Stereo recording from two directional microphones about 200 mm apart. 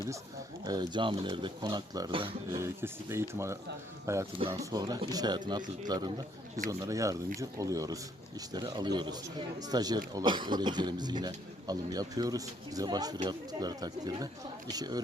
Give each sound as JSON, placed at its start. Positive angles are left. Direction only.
{"t": 0.6, "sound": "a man's voice", "side_deg": -20}
{"t": 2.6, "sound": "a man's voice", "side_deg": -15}